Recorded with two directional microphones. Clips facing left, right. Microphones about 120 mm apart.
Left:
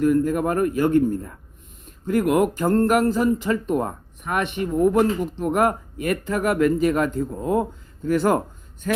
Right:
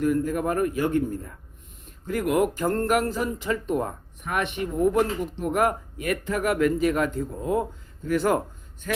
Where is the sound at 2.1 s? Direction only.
50° left (ahead or behind).